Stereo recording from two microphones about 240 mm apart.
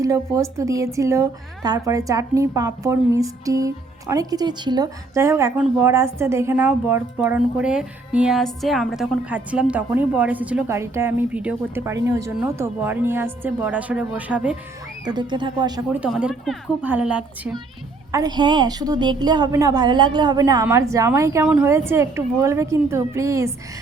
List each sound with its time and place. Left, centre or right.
0.0 s a woman's voice: centre
15.0 s a woman's voice: centre
15.9 s a woman's voice: centre
18.1 s a woman's voice: centre